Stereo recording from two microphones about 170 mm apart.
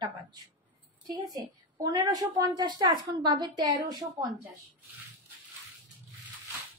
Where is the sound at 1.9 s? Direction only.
20° right (ahead or behind).